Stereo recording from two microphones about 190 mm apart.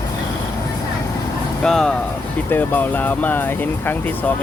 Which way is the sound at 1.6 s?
5° left (ahead or behind).